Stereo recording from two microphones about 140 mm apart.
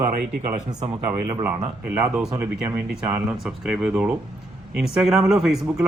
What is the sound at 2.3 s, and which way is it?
Speech, 20° right (ahead or behind).